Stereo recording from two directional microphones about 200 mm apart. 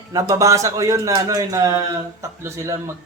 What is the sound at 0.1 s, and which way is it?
A man's voice, 15° right (ahead or behind).